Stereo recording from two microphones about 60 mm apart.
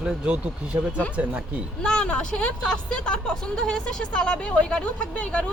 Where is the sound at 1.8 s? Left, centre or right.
Centre.